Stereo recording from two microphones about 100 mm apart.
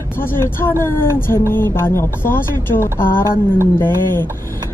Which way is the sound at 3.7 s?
25° left (ahead or behind).